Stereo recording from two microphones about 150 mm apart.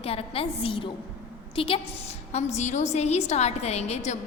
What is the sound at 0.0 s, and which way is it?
A woman's voice, 40° left (ahead or behind).